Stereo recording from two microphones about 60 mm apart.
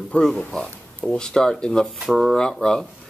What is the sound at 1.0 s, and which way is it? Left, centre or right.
Speech, centre.